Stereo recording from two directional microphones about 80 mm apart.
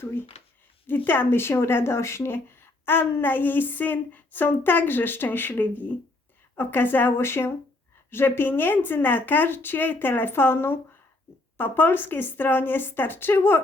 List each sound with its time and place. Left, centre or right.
0.0 s speech: left